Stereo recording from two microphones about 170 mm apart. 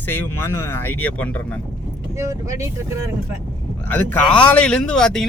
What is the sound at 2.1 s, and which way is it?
Speech, 15° right (ahead or behind).